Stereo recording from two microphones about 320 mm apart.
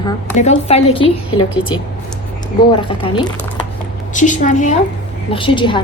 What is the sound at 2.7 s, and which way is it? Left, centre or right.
A woman's voice, centre.